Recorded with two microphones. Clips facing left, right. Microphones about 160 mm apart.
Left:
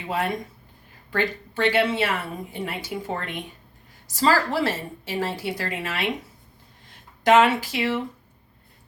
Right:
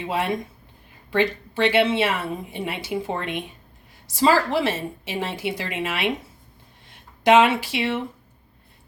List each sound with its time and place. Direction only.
0.0 s a woman's voice: 20° right (ahead or behind)
7.3 s a woman's voice: 20° right (ahead or behind)